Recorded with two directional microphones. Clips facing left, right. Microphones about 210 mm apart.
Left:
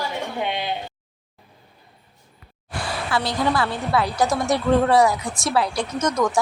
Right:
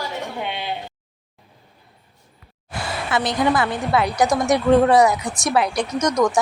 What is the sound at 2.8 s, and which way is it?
A woman's voice, 20° right (ahead or behind).